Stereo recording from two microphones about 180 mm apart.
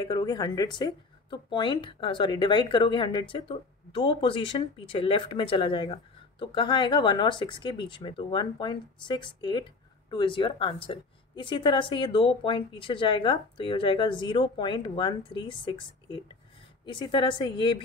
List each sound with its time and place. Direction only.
0.0 s speech: 25° left (ahead or behind)